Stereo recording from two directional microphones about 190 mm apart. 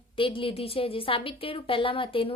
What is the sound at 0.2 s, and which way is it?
A woman's voice, 30° left (ahead or behind).